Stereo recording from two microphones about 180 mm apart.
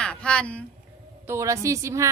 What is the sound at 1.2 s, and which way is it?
Speech, 15° right (ahead or behind).